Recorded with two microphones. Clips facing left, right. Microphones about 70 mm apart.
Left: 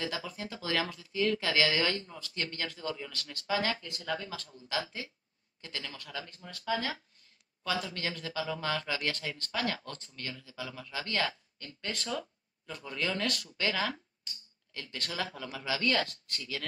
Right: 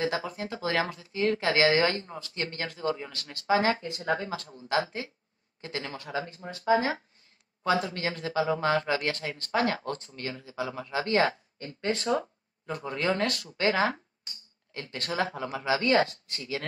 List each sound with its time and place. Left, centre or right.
0.0 s speech: right